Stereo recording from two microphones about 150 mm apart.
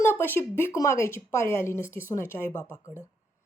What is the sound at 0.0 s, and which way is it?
Speech, 15° left (ahead or behind).